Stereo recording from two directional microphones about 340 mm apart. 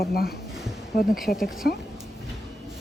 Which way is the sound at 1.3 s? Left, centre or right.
Centre.